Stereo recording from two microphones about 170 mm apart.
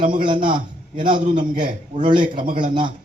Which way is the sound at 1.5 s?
55° right (ahead or behind).